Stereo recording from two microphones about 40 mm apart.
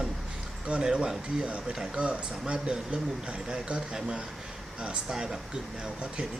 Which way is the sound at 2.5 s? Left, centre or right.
Right.